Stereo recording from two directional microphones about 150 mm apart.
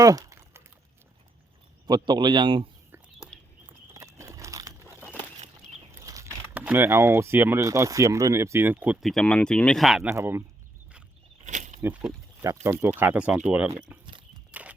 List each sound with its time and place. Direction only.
0.0 s typing: 20° right (ahead or behind)
1.9 s a man's voice: 30° right (ahead or behind)
3.9 s a sound: 20° right (ahead or behind)
6.5 s speech: 10° right (ahead or behind)
10.2 s speech: 20° right (ahead or behind)
11.4 s a sound: 55° right (ahead or behind)
12.4 s speech: 20° right (ahead or behind)
13.0 s speech: 10° right (ahead or behind)
14.5 s walk: 10° right (ahead or behind)